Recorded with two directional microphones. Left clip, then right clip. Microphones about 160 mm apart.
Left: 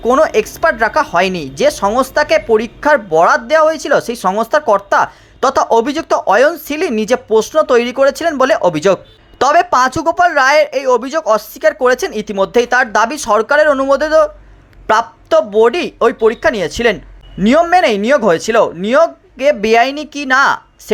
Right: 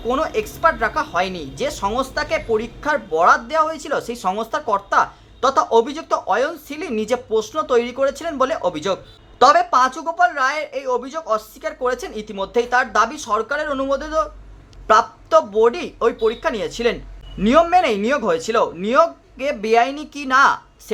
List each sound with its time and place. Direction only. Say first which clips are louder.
0.0 s speech: left 10 dB; 45° left (ahead or behind)
14.8 s speech: left 3 dB; 30° left (ahead or behind)